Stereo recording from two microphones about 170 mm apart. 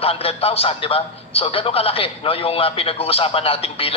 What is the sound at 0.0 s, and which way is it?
A man's voice, 35° left (ahead or behind).